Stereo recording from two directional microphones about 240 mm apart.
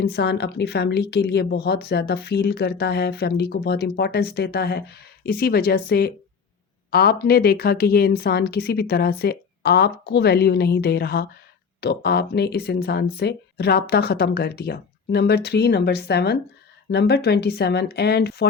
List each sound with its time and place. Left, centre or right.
0.0 s a woman's voice: left